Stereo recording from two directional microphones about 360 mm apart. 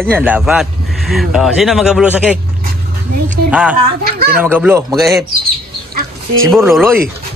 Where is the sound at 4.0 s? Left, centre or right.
Right.